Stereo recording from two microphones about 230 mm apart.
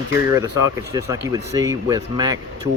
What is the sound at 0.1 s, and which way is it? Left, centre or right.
Speech, centre.